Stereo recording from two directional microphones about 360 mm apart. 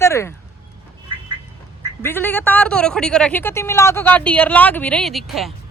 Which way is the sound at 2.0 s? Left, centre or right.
Centre.